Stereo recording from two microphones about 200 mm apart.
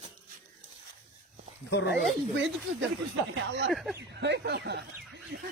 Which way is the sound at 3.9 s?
60° right (ahead or behind).